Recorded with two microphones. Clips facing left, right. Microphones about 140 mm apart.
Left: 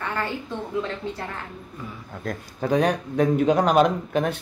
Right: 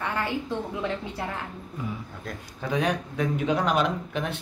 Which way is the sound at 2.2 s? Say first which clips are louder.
Left 7 dB; 45° left (ahead or behind).